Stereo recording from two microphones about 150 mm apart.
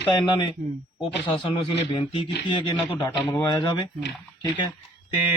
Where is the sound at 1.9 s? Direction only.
35° left (ahead or behind).